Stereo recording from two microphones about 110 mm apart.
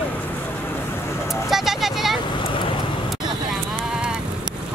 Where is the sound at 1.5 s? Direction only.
Centre (ahead or behind).